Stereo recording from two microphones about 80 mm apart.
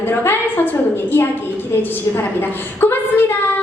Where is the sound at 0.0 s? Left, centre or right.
Left.